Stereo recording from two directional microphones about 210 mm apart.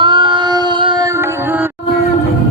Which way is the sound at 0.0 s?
20° right (ahead or behind).